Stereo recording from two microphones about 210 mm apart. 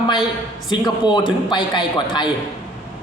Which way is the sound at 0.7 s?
20° left (ahead or behind).